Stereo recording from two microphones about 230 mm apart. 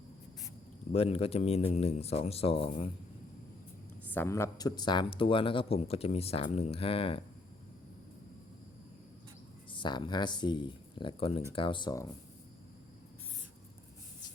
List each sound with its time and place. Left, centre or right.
0.9 s speech: left
4.1 s speech: centre
9.7 s speech: left